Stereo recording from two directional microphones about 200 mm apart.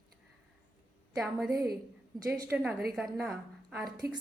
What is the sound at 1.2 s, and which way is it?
A woman's voice, 5° right (ahead or behind).